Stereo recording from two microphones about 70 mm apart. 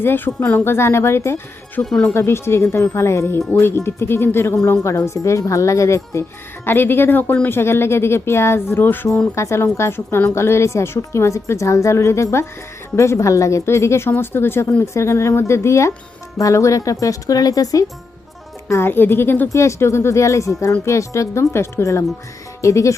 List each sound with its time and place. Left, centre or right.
0.0 s speech: left
1.8 s speech: centre
2.1 s a woman's voice: left
6.7 s speech: left
9.3 s a woman's voice: left
18.7 s speech: left
19.5 s a woman's voice: left